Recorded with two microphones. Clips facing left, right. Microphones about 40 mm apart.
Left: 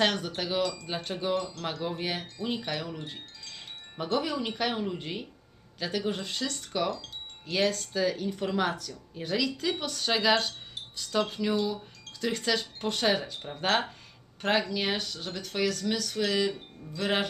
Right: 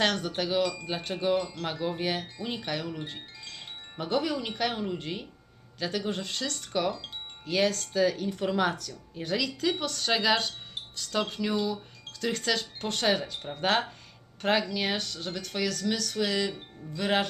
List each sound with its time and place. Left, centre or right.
0.0 s speech: centre
3.5 s wind chime: centre
4.9 s speech: centre
6.9 s speech: right
7.5 s speech: centre